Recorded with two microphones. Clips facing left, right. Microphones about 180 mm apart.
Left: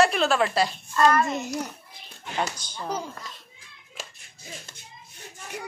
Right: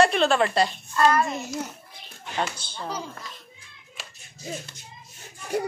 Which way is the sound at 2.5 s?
10° left (ahead or behind).